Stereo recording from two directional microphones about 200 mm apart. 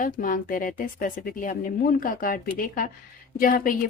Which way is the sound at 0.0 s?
40° left (ahead or behind).